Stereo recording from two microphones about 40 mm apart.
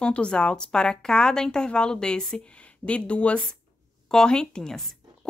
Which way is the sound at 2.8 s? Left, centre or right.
Left.